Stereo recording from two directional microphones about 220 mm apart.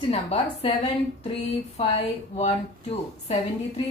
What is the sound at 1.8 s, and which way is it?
Speech, 25° left (ahead or behind).